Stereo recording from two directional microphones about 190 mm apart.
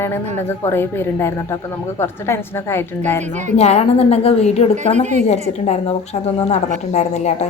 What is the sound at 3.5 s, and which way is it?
A woman's voice, 35° left (ahead or behind).